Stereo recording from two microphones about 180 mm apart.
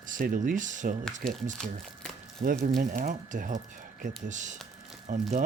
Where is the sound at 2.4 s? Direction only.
55° right (ahead or behind).